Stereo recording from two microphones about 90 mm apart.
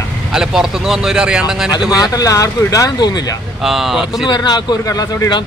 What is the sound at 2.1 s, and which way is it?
Speech, 40° left (ahead or behind).